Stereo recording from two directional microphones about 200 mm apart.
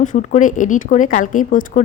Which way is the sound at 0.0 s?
40° left (ahead or behind).